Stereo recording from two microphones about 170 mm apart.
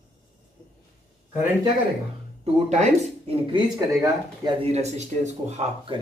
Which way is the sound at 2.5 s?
40° right (ahead or behind).